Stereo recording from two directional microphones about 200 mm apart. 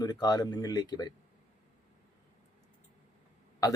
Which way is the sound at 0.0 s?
20° left (ahead or behind).